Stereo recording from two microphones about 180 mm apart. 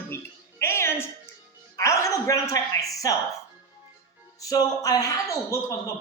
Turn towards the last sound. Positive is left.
turn(degrees=15)  # may be behind; listen again after turning